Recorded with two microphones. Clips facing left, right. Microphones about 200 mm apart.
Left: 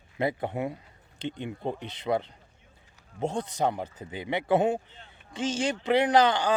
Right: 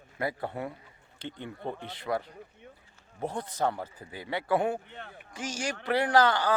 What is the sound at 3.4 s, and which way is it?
Speech, 20° left (ahead or behind).